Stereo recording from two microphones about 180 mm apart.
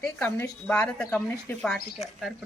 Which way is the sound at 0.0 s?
5° left (ahead or behind).